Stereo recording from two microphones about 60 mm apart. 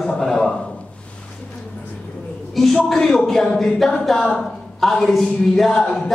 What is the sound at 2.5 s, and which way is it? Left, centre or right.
A man's voice, centre.